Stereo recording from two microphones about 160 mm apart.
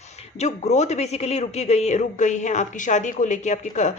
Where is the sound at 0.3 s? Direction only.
45° left (ahead or behind).